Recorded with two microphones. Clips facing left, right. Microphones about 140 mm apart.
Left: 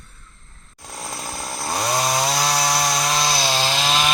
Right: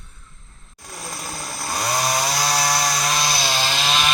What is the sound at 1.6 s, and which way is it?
Chainsaw, 25° left (ahead or behind).